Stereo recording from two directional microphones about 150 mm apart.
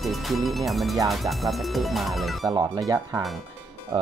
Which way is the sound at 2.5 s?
25° right (ahead or behind).